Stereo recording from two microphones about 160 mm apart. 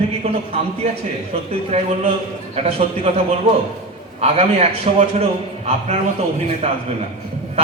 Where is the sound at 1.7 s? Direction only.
40° right (ahead or behind).